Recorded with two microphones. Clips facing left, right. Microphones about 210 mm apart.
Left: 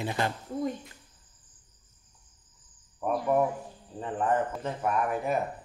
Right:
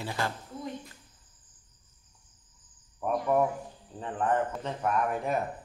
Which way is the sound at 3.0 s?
Centre (ahead or behind).